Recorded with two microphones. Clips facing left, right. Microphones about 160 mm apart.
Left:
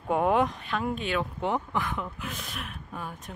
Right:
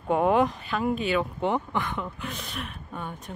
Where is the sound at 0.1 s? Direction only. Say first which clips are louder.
Right 2 dB; centre (ahead or behind).